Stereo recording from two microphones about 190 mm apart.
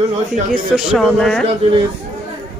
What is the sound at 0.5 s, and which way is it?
Speech, 5° right (ahead or behind).